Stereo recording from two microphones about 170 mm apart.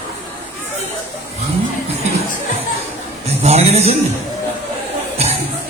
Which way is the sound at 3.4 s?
40° right (ahead or behind).